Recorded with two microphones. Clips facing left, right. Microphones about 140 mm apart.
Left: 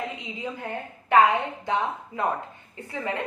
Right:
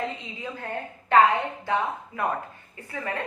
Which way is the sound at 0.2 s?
15° left (ahead or behind).